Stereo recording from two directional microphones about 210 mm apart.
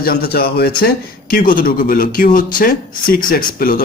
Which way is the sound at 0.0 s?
45° left (ahead or behind).